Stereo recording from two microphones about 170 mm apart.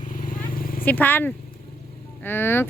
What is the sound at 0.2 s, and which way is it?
Vehicle, 55° left (ahead or behind).